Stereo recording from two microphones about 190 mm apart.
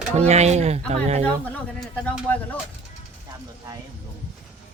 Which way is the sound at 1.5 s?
5° left (ahead or behind).